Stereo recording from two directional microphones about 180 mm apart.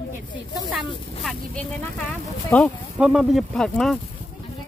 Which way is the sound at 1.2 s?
5° left (ahead or behind).